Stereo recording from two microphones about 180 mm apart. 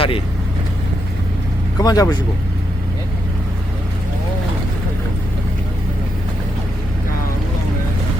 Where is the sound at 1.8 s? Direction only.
20° left (ahead or behind).